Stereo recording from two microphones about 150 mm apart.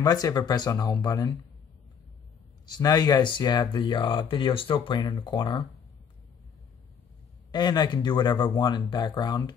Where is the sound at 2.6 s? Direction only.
30° left (ahead or behind).